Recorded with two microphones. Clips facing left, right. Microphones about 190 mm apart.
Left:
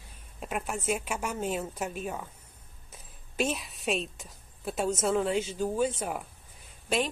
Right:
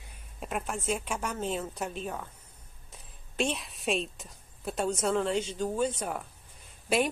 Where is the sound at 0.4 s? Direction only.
5° left (ahead or behind).